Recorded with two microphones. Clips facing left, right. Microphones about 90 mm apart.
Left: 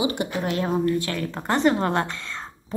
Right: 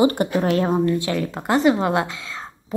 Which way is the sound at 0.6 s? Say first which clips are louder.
Right 3 dB; 25° right (ahead or behind).